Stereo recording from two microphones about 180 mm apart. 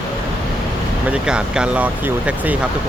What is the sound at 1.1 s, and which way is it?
Speech, 5° right (ahead or behind).